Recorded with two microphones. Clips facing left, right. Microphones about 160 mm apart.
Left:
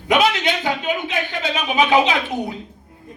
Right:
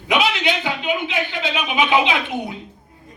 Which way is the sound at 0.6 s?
45° left (ahead or behind).